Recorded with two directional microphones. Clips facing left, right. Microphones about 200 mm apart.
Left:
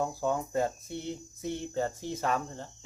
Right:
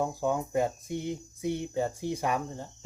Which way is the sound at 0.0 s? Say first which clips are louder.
Right 1 dB; 15° right (ahead or behind).